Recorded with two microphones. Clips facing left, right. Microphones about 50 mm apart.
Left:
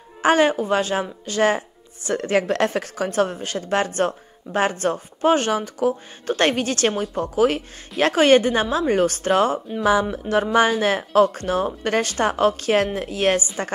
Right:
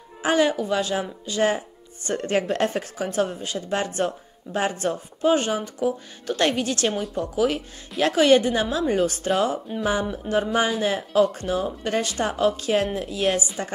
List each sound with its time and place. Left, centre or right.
0.2 s speech: left
1.2 s music: left
2.1 s a woman's voice: left
6.2 s speech: left
10.1 s music: left
10.8 s a woman's voice: left